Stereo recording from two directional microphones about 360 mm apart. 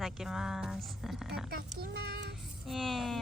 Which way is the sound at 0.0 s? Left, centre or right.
Centre.